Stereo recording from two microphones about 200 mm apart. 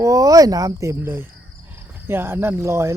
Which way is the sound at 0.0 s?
15° right (ahead or behind).